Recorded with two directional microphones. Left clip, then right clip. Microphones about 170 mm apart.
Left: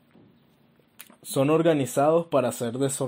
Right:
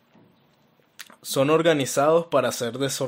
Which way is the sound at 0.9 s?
5° right (ahead or behind).